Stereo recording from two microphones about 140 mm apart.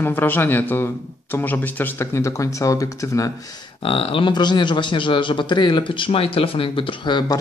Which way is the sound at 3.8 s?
40° left (ahead or behind).